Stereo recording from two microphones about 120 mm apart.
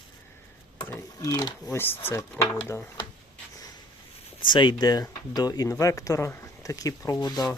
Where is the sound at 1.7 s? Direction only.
20° left (ahead or behind).